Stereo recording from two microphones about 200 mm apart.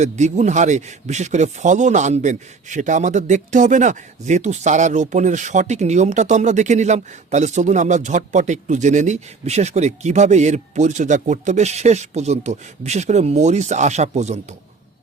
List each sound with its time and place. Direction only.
0.0 s speech: 35° right (ahead or behind)